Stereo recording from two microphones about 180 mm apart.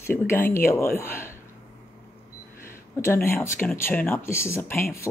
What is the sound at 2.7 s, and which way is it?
Speech, 15° left (ahead or behind).